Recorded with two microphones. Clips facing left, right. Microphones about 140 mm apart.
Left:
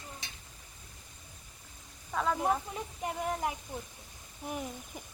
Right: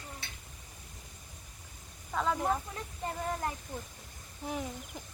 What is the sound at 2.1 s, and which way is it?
Speech, centre (ahead or behind).